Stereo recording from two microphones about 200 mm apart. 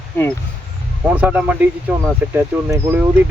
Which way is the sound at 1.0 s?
5° right (ahead or behind).